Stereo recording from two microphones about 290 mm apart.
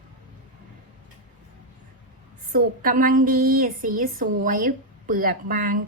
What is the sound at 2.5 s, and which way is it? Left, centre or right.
A woman's voice, right.